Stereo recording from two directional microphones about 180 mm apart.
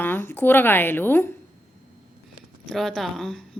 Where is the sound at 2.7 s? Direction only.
Centre (ahead or behind).